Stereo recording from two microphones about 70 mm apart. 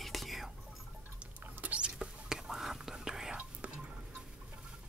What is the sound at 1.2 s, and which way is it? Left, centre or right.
Whispering, right.